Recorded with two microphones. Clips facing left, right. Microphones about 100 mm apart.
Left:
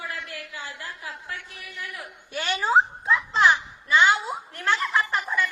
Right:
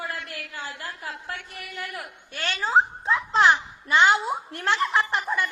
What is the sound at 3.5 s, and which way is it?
Speech, 45° right (ahead or behind).